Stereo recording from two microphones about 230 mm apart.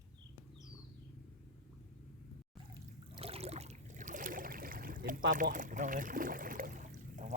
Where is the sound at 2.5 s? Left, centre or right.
Right.